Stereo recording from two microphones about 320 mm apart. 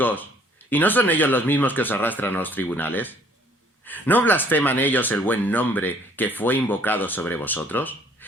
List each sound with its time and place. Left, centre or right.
0.0 s speech: centre